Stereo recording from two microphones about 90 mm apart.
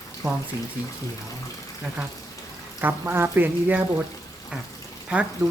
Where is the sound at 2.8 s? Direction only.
20° right (ahead or behind).